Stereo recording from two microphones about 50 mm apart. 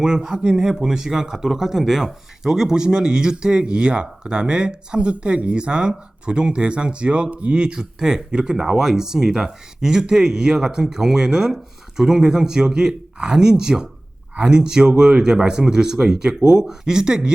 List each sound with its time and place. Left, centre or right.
0.0 s speech: centre